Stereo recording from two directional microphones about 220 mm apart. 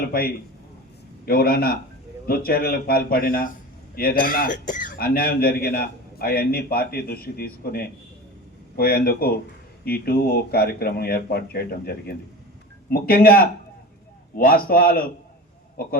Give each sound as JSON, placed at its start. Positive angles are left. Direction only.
{"t": 0.1, "sound": "speech", "side_deg": 40}